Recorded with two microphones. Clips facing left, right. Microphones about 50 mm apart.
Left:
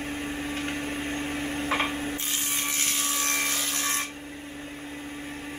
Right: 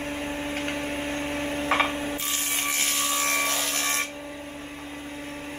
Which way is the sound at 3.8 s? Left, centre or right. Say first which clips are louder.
Right 2 dB; right.